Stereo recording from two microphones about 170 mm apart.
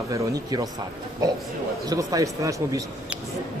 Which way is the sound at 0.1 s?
20° right (ahead or behind).